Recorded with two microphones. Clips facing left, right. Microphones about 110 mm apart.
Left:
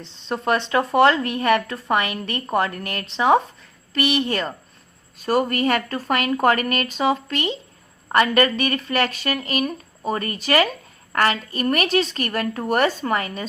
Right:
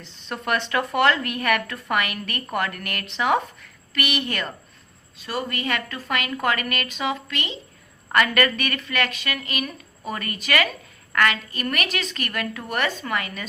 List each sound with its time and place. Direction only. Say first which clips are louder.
0.0 s speech: left 6 dB; 30° left (ahead or behind)
5.1 s speech: left 8 dB; 45° left (ahead or behind)